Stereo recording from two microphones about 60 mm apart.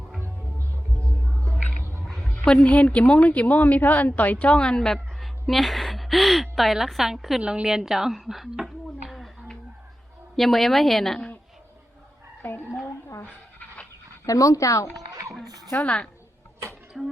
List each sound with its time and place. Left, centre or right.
2.2 s music: centre
2.7 s a woman's voice: left
4.4 s a woman's voice: centre
5.2 s a woman's voice: centre
10.3 s a woman's voice: centre
12.4 s frog: left
13.2 s dog: left
14.3 s a woman's voice: left
15.4 s speech: right
15.7 s a woman's voice: centre
16.9 s a woman's voice: centre